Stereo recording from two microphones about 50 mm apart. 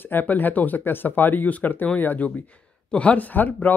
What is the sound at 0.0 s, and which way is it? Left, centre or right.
Speech, left.